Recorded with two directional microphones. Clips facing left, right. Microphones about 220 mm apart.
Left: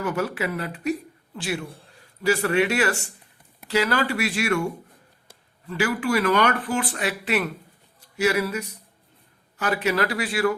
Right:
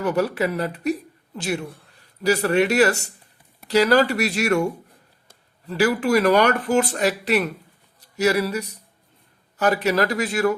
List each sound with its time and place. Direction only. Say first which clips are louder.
0.0 s speech: right 4 dB; 35° right (ahead or behind)